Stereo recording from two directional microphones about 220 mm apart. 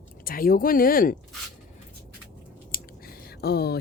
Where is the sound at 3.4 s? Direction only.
45° left (ahead or behind).